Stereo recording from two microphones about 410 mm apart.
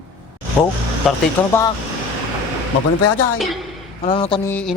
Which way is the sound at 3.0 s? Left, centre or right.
Left.